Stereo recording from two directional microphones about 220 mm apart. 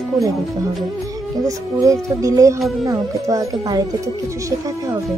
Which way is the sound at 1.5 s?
15° right (ahead or behind).